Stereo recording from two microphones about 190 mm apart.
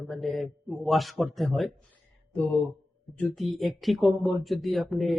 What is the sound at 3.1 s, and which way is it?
Speech, 5° left (ahead or behind).